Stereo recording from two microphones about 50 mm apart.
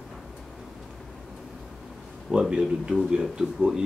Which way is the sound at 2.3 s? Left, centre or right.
Centre.